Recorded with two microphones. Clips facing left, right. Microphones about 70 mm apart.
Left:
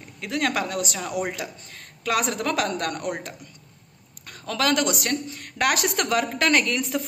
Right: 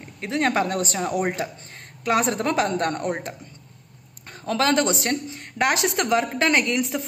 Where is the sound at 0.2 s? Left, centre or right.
Right.